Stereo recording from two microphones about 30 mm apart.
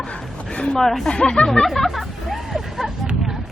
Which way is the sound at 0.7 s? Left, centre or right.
Centre.